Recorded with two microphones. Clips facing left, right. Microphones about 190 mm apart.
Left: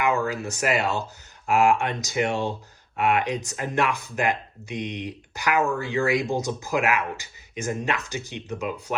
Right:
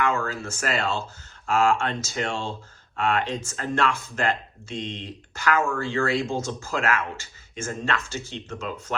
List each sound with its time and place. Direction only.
0.0 s speech: 15° left (ahead or behind)